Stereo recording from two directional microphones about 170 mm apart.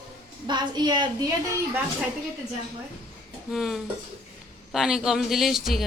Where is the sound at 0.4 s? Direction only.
25° right (ahead or behind).